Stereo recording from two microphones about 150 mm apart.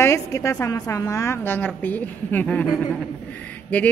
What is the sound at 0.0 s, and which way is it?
A woman's voice, 20° left (ahead or behind).